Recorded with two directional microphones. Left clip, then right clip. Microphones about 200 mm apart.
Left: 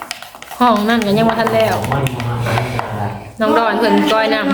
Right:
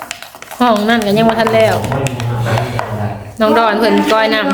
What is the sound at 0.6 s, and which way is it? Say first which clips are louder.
Speech: right 1 dB; 5° right (ahead or behind).